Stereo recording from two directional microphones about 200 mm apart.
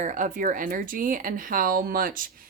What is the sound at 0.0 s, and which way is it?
Speech, 40° right (ahead or behind).